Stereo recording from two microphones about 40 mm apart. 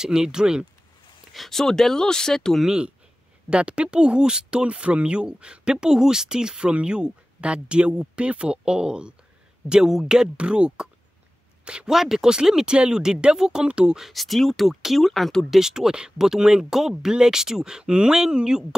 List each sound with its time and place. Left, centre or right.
0.0 s speech: centre
1.3 s speech: centre
3.4 s speech: right
11.9 s speech: centre
12.7 s speech: right; by 14.1 s centre
14.1 s speech: centre
15.5 s speech: centre